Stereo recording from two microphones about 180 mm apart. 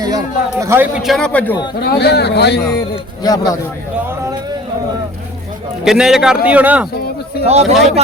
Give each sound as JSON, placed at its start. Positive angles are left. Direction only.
{"t": 0.6, "sound": "a man's voice", "side_deg": -15}
{"t": 1.8, "sound": "a man's voice", "side_deg": 60}
{"t": 2.9, "sound": "a man's voice", "side_deg": 20}
{"t": 5.8, "sound": "a man's voice", "side_deg": 0}
{"t": 7.4, "sound": "speech", "side_deg": -35}